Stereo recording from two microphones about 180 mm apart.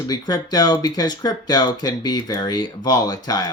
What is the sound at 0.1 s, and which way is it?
Speech, 20° left (ahead or behind).